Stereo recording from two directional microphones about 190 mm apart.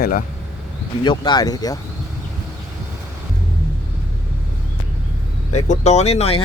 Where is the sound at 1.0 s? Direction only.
25° left (ahead or behind).